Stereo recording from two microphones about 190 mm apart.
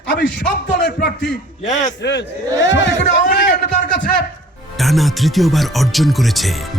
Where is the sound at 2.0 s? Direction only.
65° left (ahead or behind).